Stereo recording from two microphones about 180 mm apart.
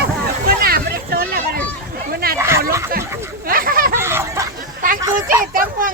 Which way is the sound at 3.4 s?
50° right (ahead or behind).